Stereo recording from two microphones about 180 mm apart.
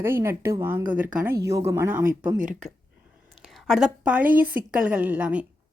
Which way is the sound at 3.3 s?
Centre (ahead or behind).